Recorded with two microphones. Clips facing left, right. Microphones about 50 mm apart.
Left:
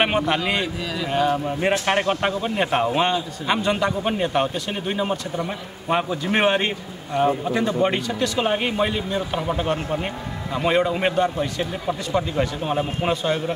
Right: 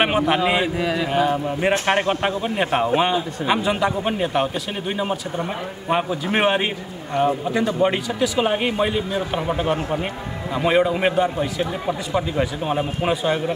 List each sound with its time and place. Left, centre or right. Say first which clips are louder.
0.0 s a man's voice: right 2 dB; centre
0.7 s speech: right 6 dB; right
1.0 s a man's voice: left 2 dB; centre
2.2 s a man's voice: right 1 dB; centre